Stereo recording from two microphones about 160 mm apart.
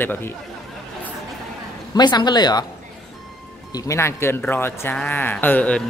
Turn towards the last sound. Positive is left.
turn(degrees=10)  # may be behind; listen again after turning